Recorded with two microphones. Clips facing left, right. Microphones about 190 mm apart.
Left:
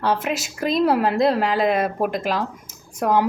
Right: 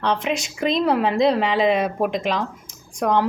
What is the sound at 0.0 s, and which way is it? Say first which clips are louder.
Speech: even; 5° left (ahead or behind).